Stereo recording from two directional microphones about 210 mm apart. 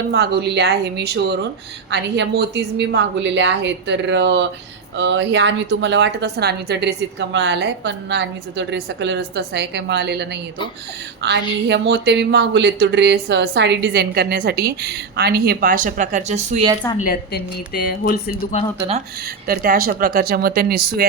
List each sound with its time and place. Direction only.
0.1 s a woman's voice: 50° right (ahead or behind); by 16.6 s 35° right (ahead or behind)
17.0 s speech: 45° left (ahead or behind)
19.5 s speech: 45° right (ahead or behind)